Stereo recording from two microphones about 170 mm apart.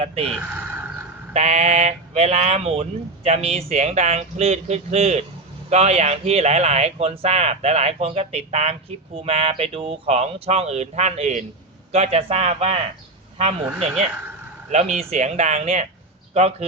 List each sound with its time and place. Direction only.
0.0 s speech: 35° right (ahead or behind)
0.3 s speech: 5° right (ahead or behind)
1.3 s speech: 40° right (ahead or behind)
13.7 s speech: centre (ahead or behind)
14.7 s speech: 40° right (ahead or behind)